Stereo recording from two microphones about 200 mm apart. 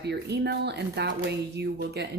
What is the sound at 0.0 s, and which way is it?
A woman's voice, 55° right (ahead or behind).